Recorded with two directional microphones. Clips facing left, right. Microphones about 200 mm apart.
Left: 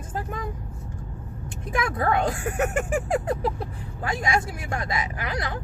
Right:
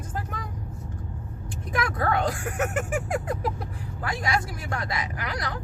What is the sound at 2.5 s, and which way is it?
Speech, 30° left (ahead or behind).